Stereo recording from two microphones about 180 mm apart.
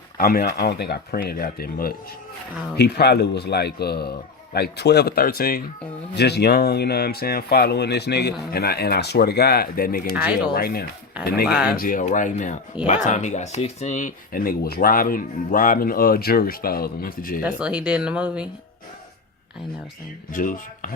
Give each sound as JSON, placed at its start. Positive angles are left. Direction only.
{"t": 0.2, "sound": "speech", "side_deg": 55}
{"t": 6.1, "sound": "speech", "side_deg": 65}
{"t": 11.4, "sound": "speech", "side_deg": -5}
{"t": 11.7, "sound": "speech", "side_deg": 50}
{"t": 12.7, "sound": "speech", "side_deg": -5}
{"t": 13.1, "sound": "speech", "side_deg": 40}
{"t": 17.6, "sound": "speech", "side_deg": -5}
{"t": 20.3, "sound": "speech", "side_deg": 50}